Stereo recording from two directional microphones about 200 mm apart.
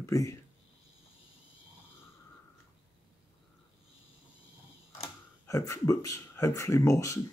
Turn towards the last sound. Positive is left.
turn(degrees=15)  # may be behind; listen again after turning